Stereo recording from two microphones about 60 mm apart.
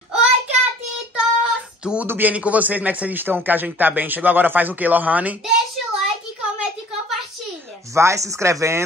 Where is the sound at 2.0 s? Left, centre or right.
Right.